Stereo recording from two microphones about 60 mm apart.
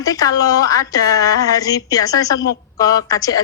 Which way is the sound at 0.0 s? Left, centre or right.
Left.